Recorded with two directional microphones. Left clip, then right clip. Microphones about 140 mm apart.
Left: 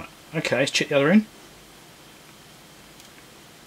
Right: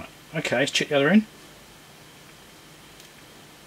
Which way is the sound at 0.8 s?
30° left (ahead or behind).